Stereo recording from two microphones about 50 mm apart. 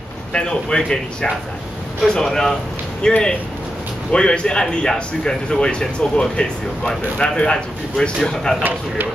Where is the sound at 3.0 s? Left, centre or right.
Centre.